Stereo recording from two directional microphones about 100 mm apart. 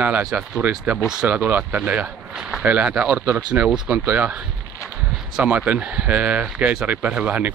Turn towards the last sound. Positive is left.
turn(degrees=-15)  # may be behind; listen again after turning